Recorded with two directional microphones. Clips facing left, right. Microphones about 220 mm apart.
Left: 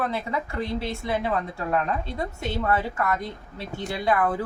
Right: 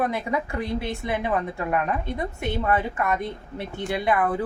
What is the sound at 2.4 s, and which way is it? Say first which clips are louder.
Speech: right 1 dB; 20° right (ahead or behind).